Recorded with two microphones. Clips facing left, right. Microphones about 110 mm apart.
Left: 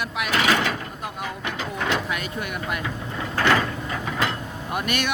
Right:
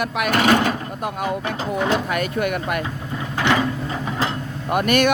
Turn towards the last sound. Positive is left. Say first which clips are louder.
# right 8 dB
turn(degrees=-50)  # may be behind; listen again after turning